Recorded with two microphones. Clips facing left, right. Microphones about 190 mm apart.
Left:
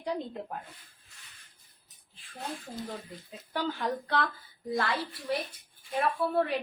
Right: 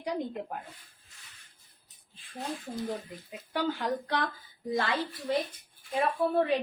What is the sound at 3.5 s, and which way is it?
A woman's voice, 15° right (ahead or behind).